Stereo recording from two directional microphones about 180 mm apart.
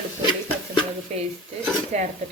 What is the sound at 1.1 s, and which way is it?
Speech, 40° right (ahead or behind).